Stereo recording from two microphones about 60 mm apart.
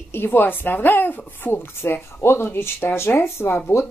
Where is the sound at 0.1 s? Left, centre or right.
Left.